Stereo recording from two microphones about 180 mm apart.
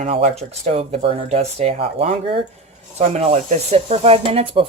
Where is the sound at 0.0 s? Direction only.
35° right (ahead or behind).